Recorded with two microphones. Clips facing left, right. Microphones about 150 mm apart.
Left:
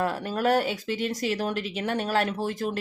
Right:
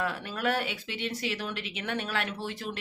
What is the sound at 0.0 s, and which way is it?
Speech, 40° left (ahead or behind).